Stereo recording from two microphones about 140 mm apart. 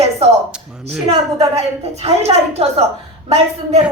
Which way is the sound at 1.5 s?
50° right (ahead or behind).